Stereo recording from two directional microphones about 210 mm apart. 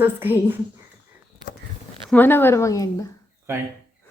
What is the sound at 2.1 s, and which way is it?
Speech, 10° left (ahead or behind).